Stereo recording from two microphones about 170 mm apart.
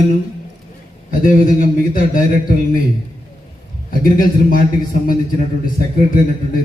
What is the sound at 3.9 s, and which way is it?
Speech, 55° left (ahead or behind).